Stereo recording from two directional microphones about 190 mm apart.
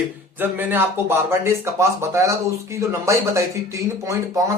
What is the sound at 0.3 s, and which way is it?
Speech, 10° right (ahead or behind).